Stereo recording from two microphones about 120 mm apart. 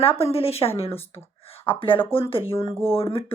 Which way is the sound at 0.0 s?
55° left (ahead or behind).